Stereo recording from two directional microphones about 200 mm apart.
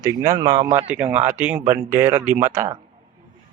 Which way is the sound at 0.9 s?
10° right (ahead or behind).